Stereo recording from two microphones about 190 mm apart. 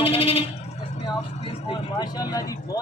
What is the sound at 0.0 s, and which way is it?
Bleat, 30° left (ahead or behind).